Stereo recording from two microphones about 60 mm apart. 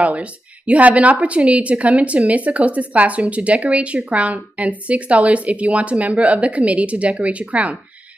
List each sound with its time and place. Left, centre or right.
0.0 s a woman's voice: right